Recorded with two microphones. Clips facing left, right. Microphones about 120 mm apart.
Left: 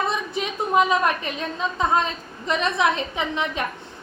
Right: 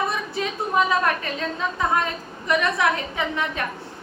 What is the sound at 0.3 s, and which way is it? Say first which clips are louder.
A woman's voice: left 2 dB; 20° left (ahead or behind).